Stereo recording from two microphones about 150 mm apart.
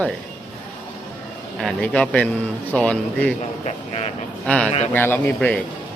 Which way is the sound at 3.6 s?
45° left (ahead or behind).